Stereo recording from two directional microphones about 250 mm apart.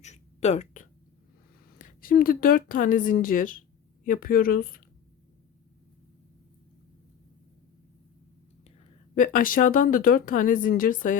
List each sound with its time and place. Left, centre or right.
0.0 s a sound: left
1.8 s speech: left
9.1 s speech: left